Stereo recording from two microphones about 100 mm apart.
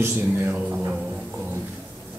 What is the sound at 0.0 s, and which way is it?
Speech, 20° right (ahead or behind).